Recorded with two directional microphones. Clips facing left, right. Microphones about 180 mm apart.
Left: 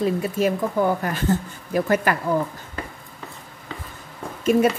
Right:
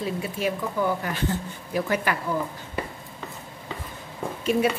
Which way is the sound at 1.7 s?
50° left (ahead or behind).